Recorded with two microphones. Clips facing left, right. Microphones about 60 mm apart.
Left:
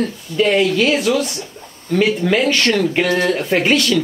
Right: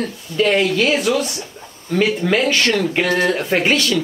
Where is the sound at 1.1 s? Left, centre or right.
Centre.